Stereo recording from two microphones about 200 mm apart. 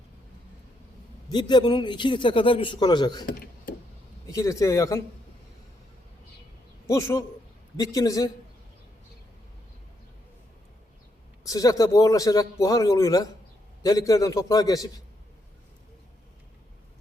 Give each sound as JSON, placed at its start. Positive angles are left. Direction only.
{"t": 1.3, "sound": "a man's voice", "side_deg": 20}
{"t": 3.2, "sound": "a sound", "side_deg": 45}
{"t": 4.3, "sound": "a man's voice", "side_deg": 15}
{"t": 6.8, "sound": "a man's voice", "side_deg": 15}
{"t": 11.4, "sound": "a man's voice", "side_deg": 15}